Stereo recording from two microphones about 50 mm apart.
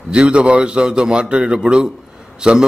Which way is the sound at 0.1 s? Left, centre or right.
Right.